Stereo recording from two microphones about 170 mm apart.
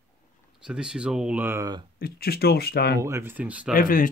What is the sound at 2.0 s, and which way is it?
Speech, 65° left (ahead or behind).